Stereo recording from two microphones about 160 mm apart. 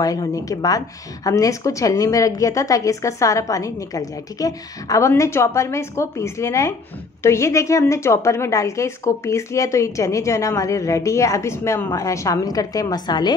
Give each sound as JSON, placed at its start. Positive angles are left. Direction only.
{"t": 0.0, "sound": "a woman's voice", "side_deg": 20}